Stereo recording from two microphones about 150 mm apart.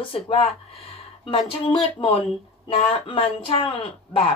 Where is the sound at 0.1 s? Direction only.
40° left (ahead or behind).